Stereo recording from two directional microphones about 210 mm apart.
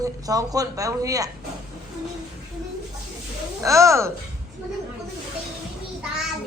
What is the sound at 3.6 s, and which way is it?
Speech, 15° right (ahead or behind).